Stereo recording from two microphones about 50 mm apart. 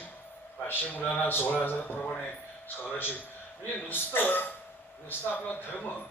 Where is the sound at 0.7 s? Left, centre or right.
Left.